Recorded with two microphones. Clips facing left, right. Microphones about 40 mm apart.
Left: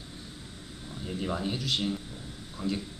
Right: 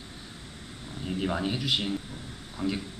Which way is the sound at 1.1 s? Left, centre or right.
Right.